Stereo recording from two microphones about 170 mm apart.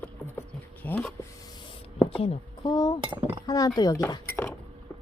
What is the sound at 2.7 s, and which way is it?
Speech, 25° left (ahead or behind).